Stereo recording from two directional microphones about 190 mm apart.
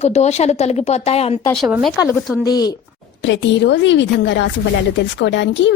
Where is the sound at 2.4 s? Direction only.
20° left (ahead or behind).